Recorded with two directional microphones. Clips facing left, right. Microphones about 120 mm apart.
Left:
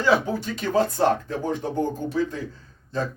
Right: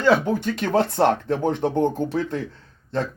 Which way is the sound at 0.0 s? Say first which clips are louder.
Right 3 dB; 60° right (ahead or behind).